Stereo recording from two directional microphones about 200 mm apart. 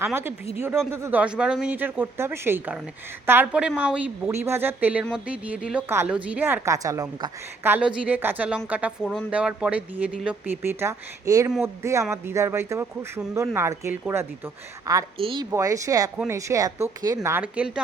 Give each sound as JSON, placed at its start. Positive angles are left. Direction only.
{"t": 0.0, "sound": "a woman's voice", "side_deg": -10}
{"t": 15.2, "sound": "a woman's voice", "side_deg": -25}
{"t": 15.4, "sound": "a woman's voice", "side_deg": -15}